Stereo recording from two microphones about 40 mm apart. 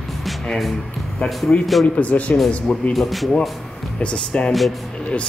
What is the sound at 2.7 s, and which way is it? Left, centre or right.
Speech, centre.